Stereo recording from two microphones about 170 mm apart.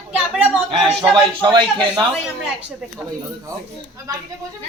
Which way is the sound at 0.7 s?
30° right (ahead or behind).